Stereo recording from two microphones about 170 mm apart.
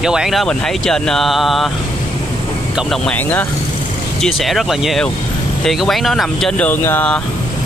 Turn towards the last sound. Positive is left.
turn(degrees=10)  # may be behind; listen again after turning